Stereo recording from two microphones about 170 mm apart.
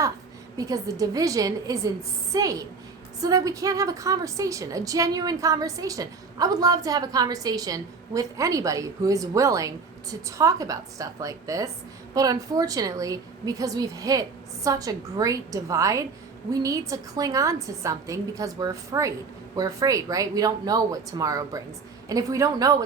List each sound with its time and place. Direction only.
0.5 s a woman's voice: 20° right (ahead or behind)